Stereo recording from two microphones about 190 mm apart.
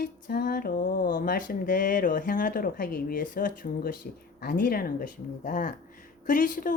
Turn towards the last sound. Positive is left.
turn(degrees=45)  # may be behind; listen again after turning